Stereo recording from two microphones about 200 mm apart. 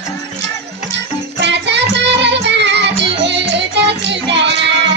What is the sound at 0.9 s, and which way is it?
Music, 60° right (ahead or behind).